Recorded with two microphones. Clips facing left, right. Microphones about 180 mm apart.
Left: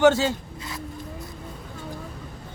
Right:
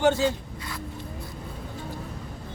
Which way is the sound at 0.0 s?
85° left.